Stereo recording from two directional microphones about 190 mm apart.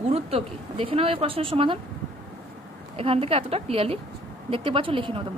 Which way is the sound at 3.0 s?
30° right (ahead or behind).